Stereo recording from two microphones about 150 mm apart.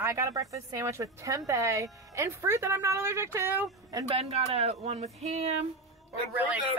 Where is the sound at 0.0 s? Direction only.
20° right (ahead or behind).